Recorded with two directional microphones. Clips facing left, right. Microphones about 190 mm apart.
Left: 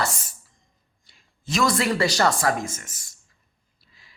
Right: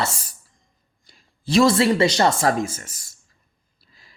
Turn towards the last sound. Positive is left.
turn(degrees=-40)  # may be behind; listen again after turning